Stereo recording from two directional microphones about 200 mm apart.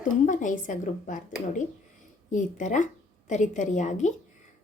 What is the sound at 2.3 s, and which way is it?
Speech, 40° left (ahead or behind).